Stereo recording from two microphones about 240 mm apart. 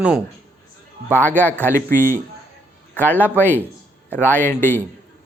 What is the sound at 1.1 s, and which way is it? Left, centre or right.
A man's voice, centre.